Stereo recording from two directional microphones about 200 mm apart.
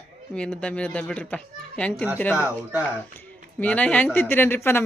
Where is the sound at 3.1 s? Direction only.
10° left (ahead or behind).